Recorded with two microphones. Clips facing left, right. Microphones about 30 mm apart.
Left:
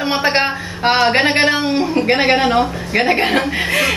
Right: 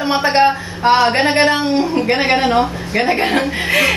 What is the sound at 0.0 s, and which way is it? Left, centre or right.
Speech, centre.